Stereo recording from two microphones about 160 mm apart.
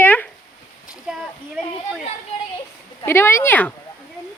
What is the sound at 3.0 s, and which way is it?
Speech, 15° left (ahead or behind).